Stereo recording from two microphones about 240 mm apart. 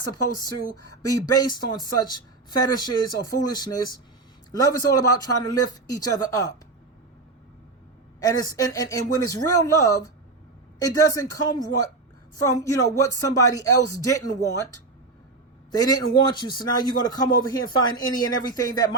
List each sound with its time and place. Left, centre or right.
0.1 s speech: centre
8.2 s speech: centre
15.7 s speech: centre